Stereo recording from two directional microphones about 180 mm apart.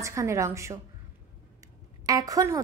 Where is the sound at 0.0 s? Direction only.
15° right (ahead or behind).